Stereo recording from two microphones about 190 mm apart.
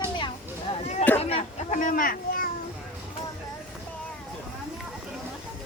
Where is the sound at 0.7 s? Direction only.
35° left (ahead or behind).